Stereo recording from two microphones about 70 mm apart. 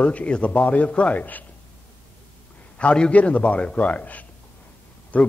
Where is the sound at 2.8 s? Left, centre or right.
Centre.